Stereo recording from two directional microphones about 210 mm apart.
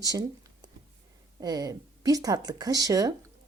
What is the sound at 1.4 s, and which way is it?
Speech, 20° right (ahead or behind).